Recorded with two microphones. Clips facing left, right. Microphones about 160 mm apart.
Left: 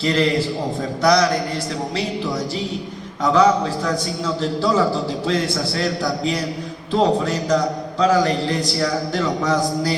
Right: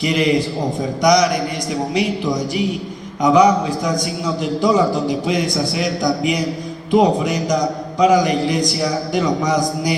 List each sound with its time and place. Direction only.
0.0 s a man's voice: 15° right (ahead or behind)